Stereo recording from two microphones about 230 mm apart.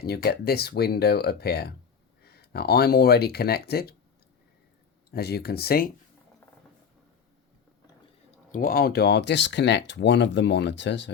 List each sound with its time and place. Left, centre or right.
0.0 s speech: left
5.1 s speech: left
8.5 s speech: left